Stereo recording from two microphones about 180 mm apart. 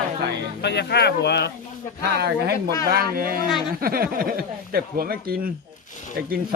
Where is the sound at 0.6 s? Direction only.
65° left (ahead or behind).